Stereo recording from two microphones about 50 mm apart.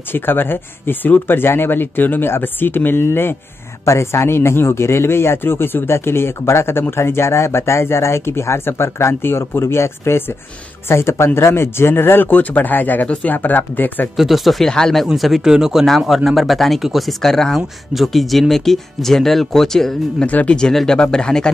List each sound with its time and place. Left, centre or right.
0.1 s speech: left
3.8 s speech: left
14.1 s speech: centre
15.1 s speech: centre
20.2 s speech: left
20.7 s speech: centre